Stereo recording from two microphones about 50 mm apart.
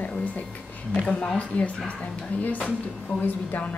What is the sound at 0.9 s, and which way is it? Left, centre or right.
Speech, centre.